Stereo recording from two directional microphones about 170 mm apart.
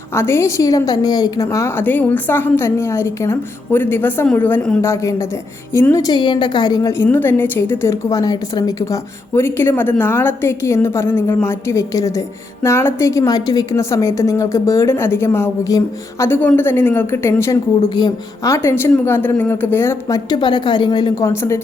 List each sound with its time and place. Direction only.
0.1 s a woman's voice: 15° left (ahead or behind)